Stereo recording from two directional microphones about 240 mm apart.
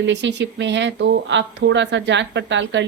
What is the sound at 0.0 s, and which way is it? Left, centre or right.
Speech, right.